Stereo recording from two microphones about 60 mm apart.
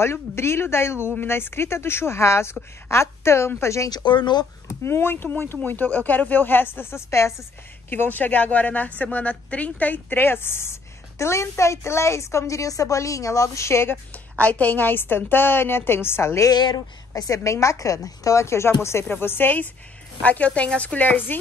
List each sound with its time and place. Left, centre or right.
0.0 s a woman's voice: left
4.6 s speech: left
7.9 s a woman's voice: left
14.1 s speech: left
16.3 s a woman's voice: left
17.4 s a woman's voice: left
19.0 s speech: left